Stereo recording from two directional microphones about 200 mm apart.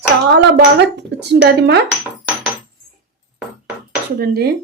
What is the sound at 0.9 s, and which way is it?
Speech, 60° right (ahead or behind).